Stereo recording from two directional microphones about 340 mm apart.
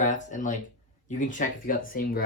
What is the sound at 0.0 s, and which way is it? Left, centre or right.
Speech, left.